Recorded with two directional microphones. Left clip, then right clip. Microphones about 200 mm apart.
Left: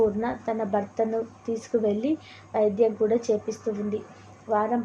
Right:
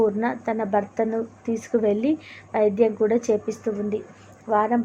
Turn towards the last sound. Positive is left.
turn(degrees=-20)  # may be behind; listen again after turning